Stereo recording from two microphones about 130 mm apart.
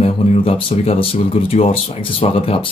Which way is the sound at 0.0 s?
45° left (ahead or behind).